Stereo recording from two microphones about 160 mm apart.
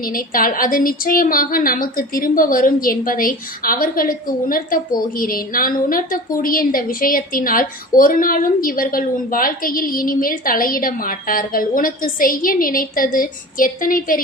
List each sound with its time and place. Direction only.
0.1 s a woman's voice: 60° left (ahead or behind)